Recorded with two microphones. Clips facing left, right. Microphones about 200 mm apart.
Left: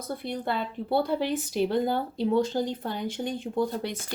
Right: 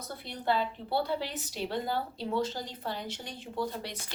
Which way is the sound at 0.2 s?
55° left (ahead or behind).